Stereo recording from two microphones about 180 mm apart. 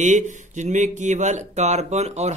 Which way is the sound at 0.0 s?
45° right (ahead or behind).